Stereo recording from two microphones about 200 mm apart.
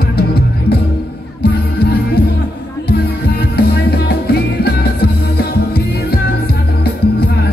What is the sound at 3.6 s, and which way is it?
Music, 50° left (ahead or behind).